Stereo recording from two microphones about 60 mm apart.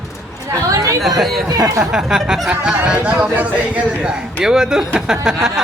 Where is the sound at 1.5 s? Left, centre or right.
Right.